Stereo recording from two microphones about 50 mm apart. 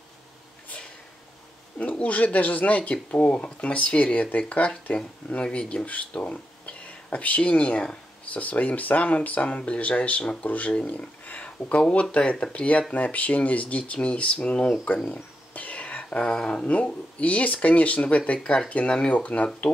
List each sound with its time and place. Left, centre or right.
1.8 s speech: left
10.9 s a sound: left
11.9 s speech: left